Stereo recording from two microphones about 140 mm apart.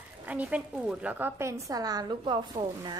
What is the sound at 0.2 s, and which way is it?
A woman's voice, 10° right (ahead or behind).